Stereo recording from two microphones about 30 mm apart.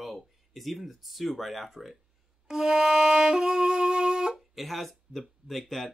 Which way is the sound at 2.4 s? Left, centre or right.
Centre.